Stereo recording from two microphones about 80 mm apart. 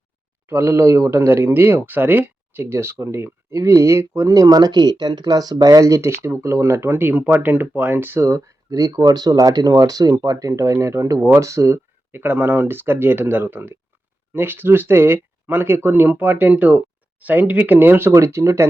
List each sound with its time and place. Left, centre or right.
0.4 s speech: right
4.3 s speech: right
8.3 s speech: right